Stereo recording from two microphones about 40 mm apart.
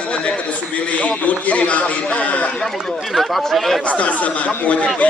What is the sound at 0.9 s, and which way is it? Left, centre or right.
Speech, left.